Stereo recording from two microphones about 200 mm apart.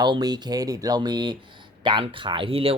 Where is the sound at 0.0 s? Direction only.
20° right (ahead or behind).